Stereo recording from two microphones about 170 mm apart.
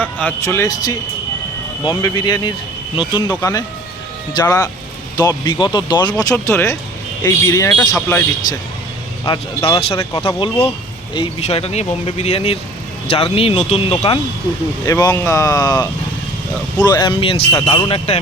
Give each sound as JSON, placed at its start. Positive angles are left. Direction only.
{"t": 0.0, "sound": "speech", "side_deg": 10}
{"t": 7.7, "sound": "speech", "side_deg": 10}
{"t": 9.2, "sound": "speech", "side_deg": 30}
{"t": 14.8, "sound": "speech", "side_deg": 20}